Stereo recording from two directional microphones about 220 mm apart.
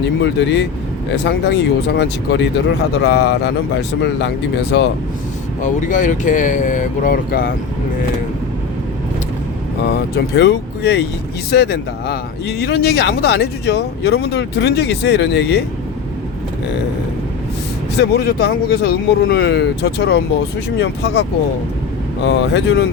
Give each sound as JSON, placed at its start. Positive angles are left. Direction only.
{"t": 0.3, "sound": "speech", "side_deg": 50}
{"t": 5.6, "sound": "speech", "side_deg": 35}
{"t": 10.3, "sound": "speech", "side_deg": 50}
{"t": 18.0, "sound": "speech", "side_deg": 45}